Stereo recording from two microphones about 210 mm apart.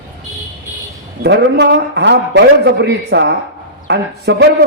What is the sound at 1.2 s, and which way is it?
A man's voice, 50° right (ahead or behind).